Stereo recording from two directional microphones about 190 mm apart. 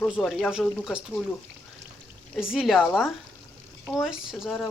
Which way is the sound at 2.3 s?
5° right (ahead or behind).